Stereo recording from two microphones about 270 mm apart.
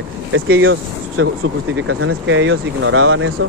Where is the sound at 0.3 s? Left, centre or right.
Right.